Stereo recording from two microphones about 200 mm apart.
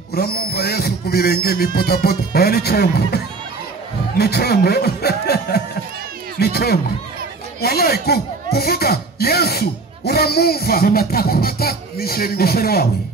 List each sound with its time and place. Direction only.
0.1 s speech: 50° left (ahead or behind)
4.2 s speech: 55° left (ahead or behind)